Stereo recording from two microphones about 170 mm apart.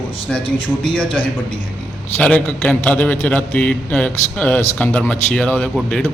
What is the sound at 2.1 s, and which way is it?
A man's voice, 5° left (ahead or behind).